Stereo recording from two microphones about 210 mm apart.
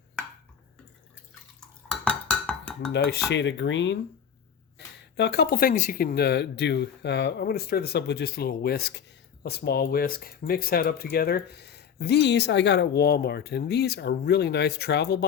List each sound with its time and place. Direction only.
1.9 s dishes: 5° left (ahead or behind)
2.9 s speech: 55° left (ahead or behind)
5.1 s speech: 50° left (ahead or behind)